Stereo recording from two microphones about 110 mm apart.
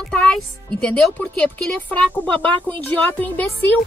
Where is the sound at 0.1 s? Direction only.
10° left (ahead or behind).